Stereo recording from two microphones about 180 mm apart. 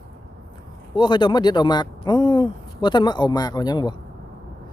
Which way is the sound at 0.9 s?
25° left (ahead or behind).